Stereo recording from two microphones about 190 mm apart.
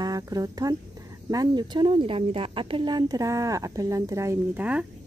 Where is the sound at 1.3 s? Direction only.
20° right (ahead or behind).